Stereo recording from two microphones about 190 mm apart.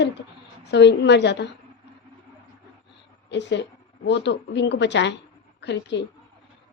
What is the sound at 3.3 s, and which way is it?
A woman's voice, 65° left (ahead or behind).